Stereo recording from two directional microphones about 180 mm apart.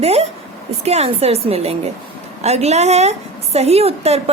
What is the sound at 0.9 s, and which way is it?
A woman's voice, 35° right (ahead or behind).